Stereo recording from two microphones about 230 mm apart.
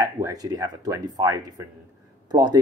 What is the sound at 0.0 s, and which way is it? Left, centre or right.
Speech, centre.